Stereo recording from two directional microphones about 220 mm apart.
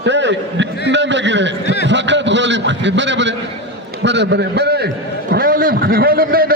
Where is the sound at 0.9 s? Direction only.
55° right (ahead or behind).